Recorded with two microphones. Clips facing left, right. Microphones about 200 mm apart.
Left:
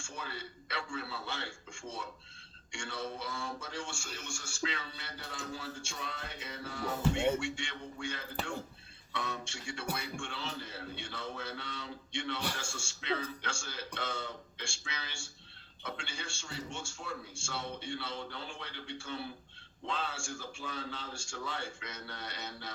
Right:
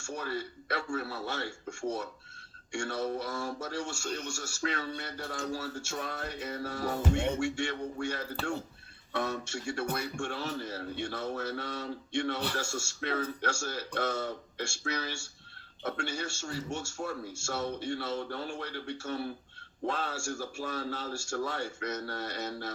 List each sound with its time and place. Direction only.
0.0 s a man's voice: 45° right (ahead or behind)